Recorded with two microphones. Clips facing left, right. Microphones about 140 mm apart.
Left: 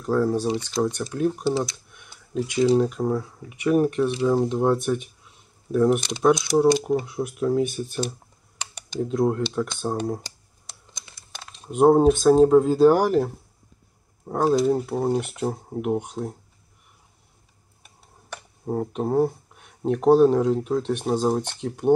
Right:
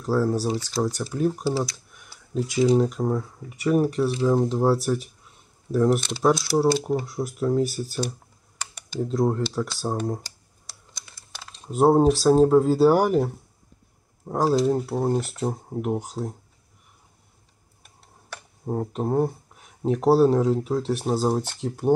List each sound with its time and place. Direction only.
0.0 s speech: 5° right (ahead or behind)
8.9 s speech: centre (ahead or behind)
10.7 s computer keyboard: 20° left (ahead or behind)
11.1 s speech: centre (ahead or behind)
17.8 s speech: centre (ahead or behind)